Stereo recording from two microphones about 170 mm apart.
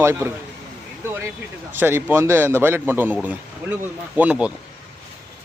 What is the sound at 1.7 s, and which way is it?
Speech, 15° right (ahead or behind).